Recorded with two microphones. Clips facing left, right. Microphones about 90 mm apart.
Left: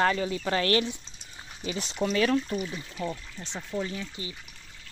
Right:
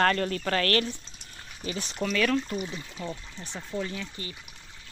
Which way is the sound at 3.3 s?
20° left (ahead or behind).